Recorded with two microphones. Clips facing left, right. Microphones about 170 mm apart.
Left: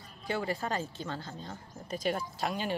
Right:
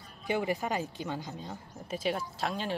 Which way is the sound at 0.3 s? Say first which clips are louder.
Right 2 dB; 15° right (ahead or behind).